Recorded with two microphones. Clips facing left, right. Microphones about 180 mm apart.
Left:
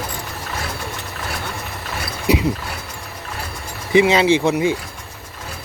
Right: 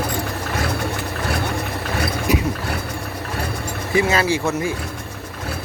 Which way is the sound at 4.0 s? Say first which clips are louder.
Left 5 dB; 20° left (ahead or behind).